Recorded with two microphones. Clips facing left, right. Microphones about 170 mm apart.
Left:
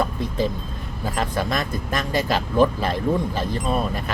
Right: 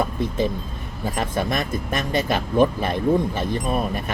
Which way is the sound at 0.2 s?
20° right (ahead or behind).